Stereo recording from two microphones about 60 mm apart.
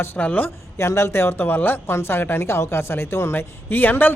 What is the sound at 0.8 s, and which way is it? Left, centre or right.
Speech, left.